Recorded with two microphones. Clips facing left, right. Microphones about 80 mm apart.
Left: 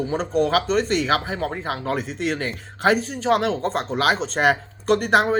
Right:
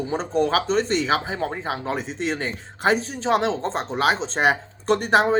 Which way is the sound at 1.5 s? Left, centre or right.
Centre.